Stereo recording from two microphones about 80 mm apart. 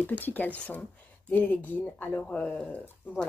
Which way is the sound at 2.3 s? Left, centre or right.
Centre.